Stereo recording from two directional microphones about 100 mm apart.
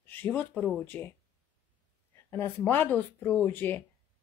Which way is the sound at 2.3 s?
20° left (ahead or behind).